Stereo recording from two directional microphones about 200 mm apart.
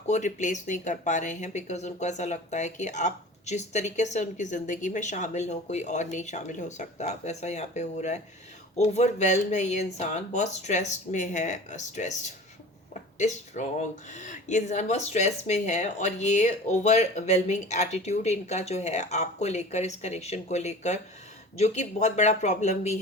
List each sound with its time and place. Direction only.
0.1 s speech: 35° left (ahead or behind)